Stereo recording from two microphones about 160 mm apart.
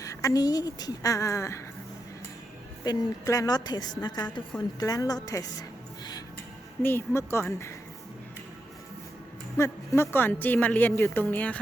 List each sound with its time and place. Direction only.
0.0 s speech: 20° left (ahead or behind)
2.8 s speech: 25° left (ahead or behind)
6.8 s a woman's voice: 15° left (ahead or behind)
9.6 s a woman's voice: 15° left (ahead or behind)